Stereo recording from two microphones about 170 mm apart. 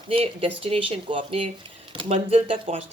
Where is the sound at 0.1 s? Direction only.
35° right (ahead or behind).